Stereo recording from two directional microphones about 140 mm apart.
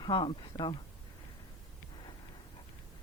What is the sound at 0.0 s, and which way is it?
Speech, 35° left (ahead or behind).